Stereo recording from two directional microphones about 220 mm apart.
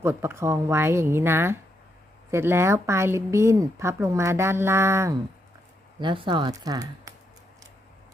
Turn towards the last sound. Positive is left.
turn(degrees=-15)  # may be behind; listen again after turning